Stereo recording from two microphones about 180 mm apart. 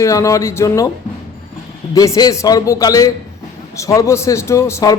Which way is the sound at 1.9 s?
20° left (ahead or behind).